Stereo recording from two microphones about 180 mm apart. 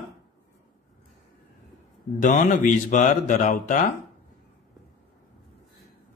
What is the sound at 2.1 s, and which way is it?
Speech, 45° left (ahead or behind).